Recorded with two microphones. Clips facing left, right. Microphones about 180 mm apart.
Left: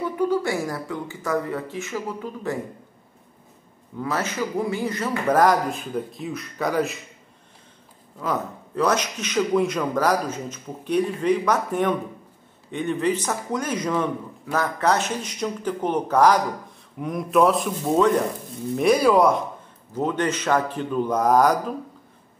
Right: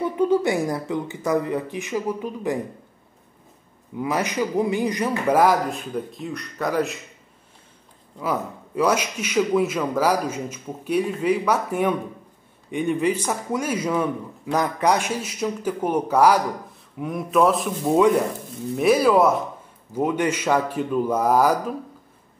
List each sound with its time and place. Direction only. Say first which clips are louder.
0.0 s speech: right 3 dB; 20° right (ahead or behind)
4.0 s a man's voice: right 2 dB; 15° right (ahead or behind); by 7.0 s centre (ahead or behind)
8.2 s a man's voice: right 1 dB; 10° right (ahead or behind)
17.8 s a man's voice: right 2 dB; 10° right (ahead or behind)